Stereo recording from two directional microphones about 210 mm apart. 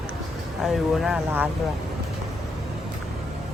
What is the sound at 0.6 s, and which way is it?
Speech, centre (ahead or behind).